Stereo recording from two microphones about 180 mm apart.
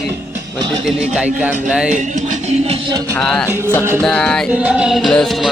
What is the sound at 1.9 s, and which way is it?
Speech, 45° right (ahead or behind).